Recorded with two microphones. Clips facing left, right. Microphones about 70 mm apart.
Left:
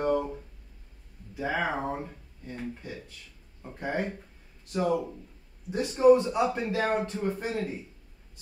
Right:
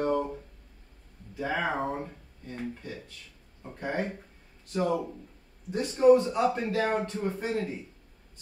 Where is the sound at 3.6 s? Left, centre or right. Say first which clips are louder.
Even; centre.